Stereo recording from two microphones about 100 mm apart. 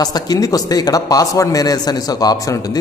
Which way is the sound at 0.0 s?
40° left (ahead or behind).